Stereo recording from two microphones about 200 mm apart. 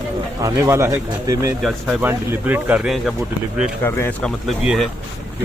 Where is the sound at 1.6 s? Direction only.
5° right (ahead or behind).